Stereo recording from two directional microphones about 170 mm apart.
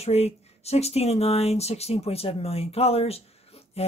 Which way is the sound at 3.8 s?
35° left (ahead or behind).